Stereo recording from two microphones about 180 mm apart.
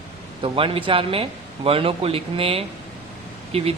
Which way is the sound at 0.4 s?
30° right (ahead or behind).